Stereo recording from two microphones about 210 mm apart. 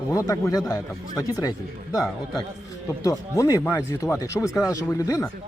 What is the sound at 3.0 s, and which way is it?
Speech, 15° left (ahead or behind).